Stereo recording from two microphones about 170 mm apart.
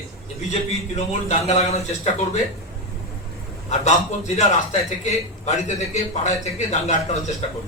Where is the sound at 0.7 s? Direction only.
40° left (ahead or behind).